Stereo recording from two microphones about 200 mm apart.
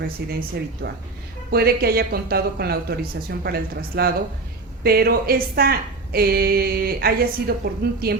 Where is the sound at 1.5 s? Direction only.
50° right (ahead or behind).